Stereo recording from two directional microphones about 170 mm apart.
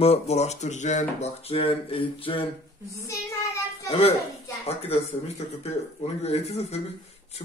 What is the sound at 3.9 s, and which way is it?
Speech, 35° left (ahead or behind).